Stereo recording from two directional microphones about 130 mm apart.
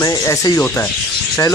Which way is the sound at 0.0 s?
30° left (ahead or behind).